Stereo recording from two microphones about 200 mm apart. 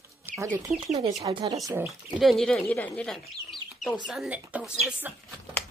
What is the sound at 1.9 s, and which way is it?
Speech, centre (ahead or behind).